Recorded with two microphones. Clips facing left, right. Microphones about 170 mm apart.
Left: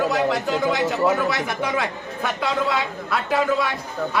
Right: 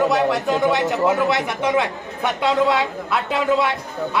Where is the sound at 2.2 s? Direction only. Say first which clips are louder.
Right 5 dB; 20° right (ahead or behind).